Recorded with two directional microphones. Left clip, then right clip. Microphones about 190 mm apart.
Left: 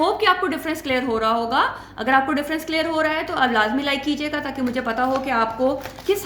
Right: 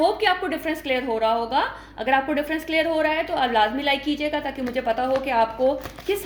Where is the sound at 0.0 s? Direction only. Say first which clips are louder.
Left 2 dB; 20° left (ahead or behind).